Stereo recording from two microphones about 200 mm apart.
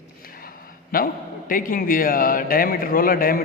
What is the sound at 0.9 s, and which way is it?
A man's voice, 45° left (ahead or behind).